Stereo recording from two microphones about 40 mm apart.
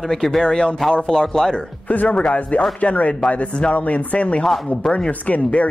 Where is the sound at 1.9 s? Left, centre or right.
Left.